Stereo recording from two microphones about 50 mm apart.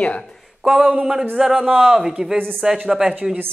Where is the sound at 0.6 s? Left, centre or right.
Centre.